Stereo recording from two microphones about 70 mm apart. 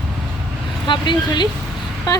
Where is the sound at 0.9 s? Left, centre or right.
Left.